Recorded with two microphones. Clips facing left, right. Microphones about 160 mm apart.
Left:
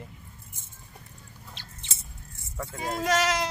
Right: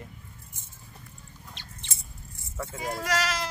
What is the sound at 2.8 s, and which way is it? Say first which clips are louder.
Speech: left 4 dB; 25° left (ahead or behind).